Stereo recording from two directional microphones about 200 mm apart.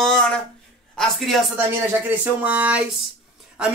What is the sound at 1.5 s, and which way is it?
Speech, 10° right (ahead or behind).